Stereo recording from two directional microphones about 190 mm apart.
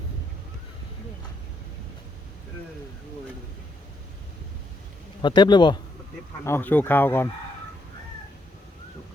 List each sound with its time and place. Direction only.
5.2 s a man's voice: 25° left (ahead or behind)
6.4 s speech: 10° left (ahead or behind)